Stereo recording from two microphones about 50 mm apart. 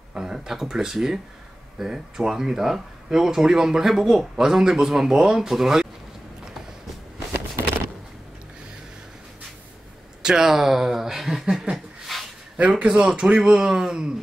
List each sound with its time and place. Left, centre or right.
0.1 s speech: centre
10.2 s speech: centre
11.7 s a sound: centre
12.5 s speech: right